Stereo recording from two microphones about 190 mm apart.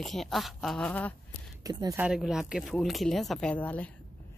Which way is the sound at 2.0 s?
Centre (ahead or behind).